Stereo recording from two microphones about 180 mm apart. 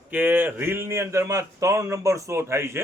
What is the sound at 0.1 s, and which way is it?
A man's voice, 10° right (ahead or behind).